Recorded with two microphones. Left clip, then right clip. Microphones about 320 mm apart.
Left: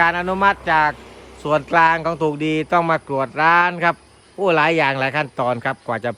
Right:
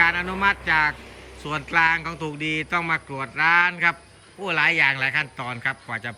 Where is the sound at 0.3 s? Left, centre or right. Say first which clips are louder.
Left 5 dB; centre.